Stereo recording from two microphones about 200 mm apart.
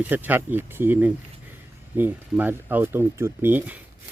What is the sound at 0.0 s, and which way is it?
Speech, 10° right (ahead or behind).